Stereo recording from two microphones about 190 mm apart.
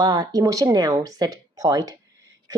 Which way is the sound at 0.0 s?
20° right (ahead or behind).